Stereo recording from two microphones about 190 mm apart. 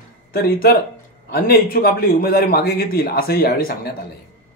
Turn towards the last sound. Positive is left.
turn(degrees=55)  # may be behind; listen again after turning